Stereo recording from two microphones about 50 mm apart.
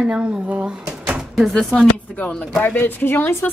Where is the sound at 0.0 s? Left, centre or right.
Centre.